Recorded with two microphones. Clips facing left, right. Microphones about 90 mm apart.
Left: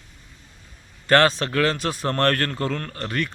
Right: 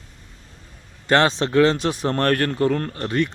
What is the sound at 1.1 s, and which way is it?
A man's voice, 20° right (ahead or behind).